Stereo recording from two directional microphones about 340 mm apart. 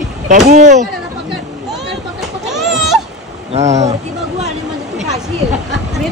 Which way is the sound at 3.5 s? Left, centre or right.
Centre.